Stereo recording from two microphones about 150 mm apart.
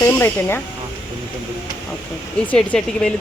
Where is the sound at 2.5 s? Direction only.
5° left (ahead or behind).